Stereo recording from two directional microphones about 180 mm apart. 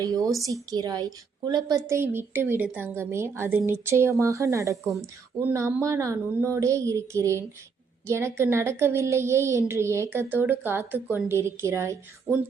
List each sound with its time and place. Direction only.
0.0 s a woman's voice: 20° right (ahead or behind)